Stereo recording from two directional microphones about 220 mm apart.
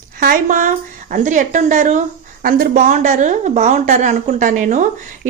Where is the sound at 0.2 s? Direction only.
40° right (ahead or behind).